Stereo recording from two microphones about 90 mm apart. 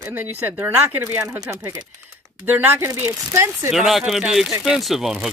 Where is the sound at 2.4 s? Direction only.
20° right (ahead or behind).